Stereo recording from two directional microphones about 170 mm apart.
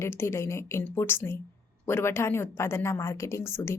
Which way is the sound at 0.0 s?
15° left (ahead or behind).